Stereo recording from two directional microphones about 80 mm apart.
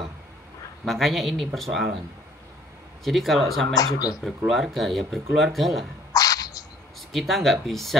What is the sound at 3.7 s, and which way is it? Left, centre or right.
Speech, left.